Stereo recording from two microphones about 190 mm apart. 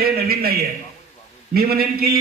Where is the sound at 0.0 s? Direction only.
55° right (ahead or behind).